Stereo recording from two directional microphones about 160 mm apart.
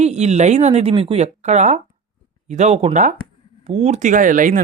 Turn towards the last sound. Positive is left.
turn(degrees=-55)  # may be behind; listen again after turning